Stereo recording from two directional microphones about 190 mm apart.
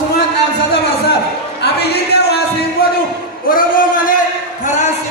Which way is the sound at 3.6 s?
45° left (ahead or behind).